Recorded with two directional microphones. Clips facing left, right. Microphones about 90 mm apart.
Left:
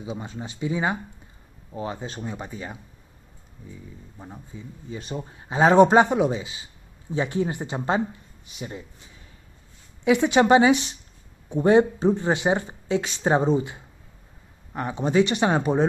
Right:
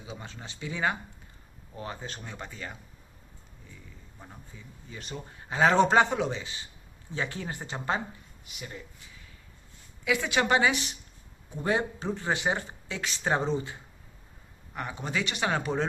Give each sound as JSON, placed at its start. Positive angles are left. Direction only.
{"t": 0.0, "sound": "a man's voice", "side_deg": 20}
{"t": 4.2, "sound": "a man's voice", "side_deg": 20}